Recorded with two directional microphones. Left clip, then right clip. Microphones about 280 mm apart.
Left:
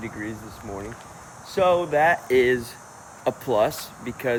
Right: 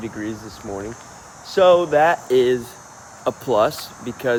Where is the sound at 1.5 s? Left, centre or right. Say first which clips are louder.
Right 6 dB; right.